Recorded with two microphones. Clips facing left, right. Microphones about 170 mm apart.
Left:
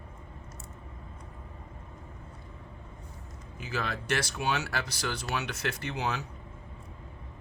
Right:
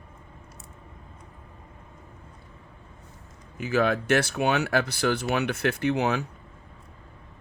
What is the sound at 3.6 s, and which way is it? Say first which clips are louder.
Speech: right 11 dB; 55° right (ahead or behind).